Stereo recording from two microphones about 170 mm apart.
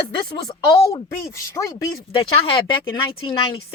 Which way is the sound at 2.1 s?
30° left (ahead or behind).